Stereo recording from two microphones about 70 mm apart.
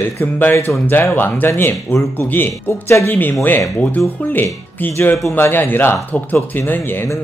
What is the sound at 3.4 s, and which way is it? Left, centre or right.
Speech, left.